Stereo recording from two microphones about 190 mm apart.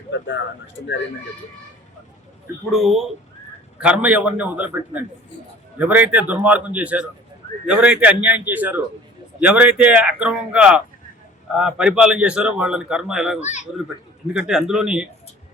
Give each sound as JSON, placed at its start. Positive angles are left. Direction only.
{"t": 0.1, "sound": "speech", "side_deg": 70}
{"t": 2.7, "sound": "a man's voice", "side_deg": 0}
{"t": 5.8, "sound": "a man's voice", "side_deg": -10}
{"t": 13.4, "sound": "a child's voice", "side_deg": 40}
{"t": 14.3, "sound": "a man's voice", "side_deg": -5}